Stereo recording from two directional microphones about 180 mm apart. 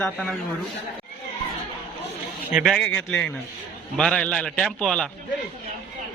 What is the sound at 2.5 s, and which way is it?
Speech, 5° right (ahead or behind).